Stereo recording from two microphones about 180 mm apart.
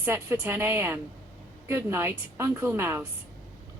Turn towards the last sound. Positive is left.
turn(degrees=-15)  # may be behind; listen again after turning